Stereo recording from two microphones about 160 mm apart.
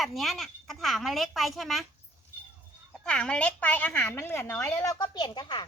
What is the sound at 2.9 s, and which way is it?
A woman's voice, 5° left (ahead or behind).